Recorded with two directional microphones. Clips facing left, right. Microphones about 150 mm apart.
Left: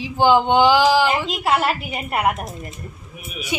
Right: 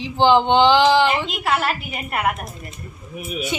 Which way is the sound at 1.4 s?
25° left (ahead or behind).